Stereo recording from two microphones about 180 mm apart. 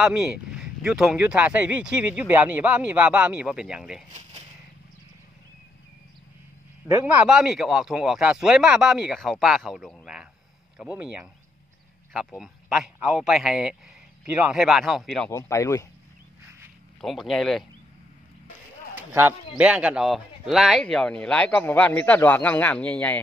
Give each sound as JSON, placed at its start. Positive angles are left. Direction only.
{"t": 0.0, "sound": "speech", "side_deg": -5}
{"t": 6.9, "sound": "a man's voice", "side_deg": -10}
{"t": 12.4, "sound": "a man's voice", "side_deg": 0}
{"t": 15.3, "sound": "speech", "side_deg": 15}
{"t": 17.0, "sound": "a man's voice", "side_deg": 0}
{"t": 18.9, "sound": "a man's voice", "side_deg": -10}